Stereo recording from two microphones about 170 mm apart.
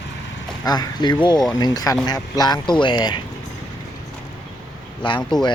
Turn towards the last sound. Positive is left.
turn(degrees=5)  # may be behind; listen again after turning